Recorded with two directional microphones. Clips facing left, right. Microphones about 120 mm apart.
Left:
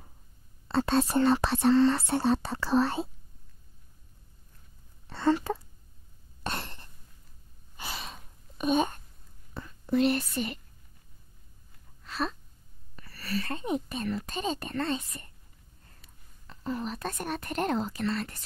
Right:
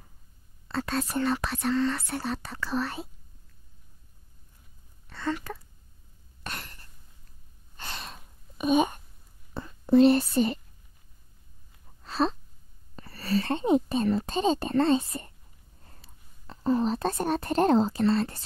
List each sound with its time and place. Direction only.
0.7 s speech: 25° left (ahead or behind)
5.1 s speech: 30° left (ahead or behind)
6.4 s cough: 30° left (ahead or behind)
7.7 s gasp: 5° left (ahead or behind); by 9.0 s 15° right (ahead or behind)
9.5 s speech: 30° right (ahead or behind)
12.0 s a sound: 30° right (ahead or behind)
12.9 s a woman's voice: 30° right (ahead or behind)